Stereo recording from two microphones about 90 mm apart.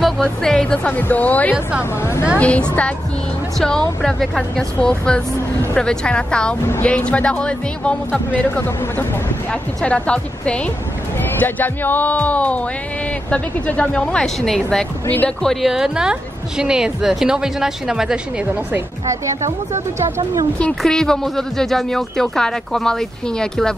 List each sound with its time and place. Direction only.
0.0 s speech: 5° left (ahead or behind)
1.5 s a woman's voice: 10° right (ahead or behind)
2.0 s a woman's voice: 30° left (ahead or behind)
2.3 s speech: 15° left (ahead or behind)
9.5 s speech: 10° left (ahead or behind)
15.0 s speech: 20° left (ahead or behind)
15.4 s a woman's voice: centre (ahead or behind)
20.8 s speech: 5° left (ahead or behind)